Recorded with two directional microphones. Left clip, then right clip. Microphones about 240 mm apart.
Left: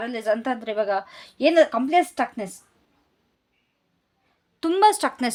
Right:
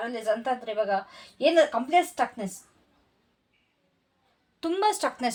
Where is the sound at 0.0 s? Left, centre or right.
Left.